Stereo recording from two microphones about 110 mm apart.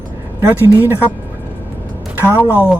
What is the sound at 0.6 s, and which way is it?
Speech, 20° right (ahead or behind).